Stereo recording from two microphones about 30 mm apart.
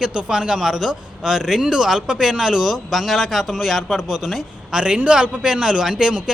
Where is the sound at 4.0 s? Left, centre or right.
Centre.